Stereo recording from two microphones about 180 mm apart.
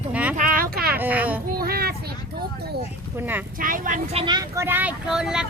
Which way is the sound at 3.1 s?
10° right (ahead or behind).